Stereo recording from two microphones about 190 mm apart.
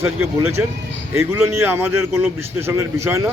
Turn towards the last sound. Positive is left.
turn(degrees=-15)  # may be behind; listen again after turning